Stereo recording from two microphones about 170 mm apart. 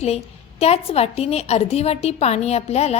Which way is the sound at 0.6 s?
35° left (ahead or behind).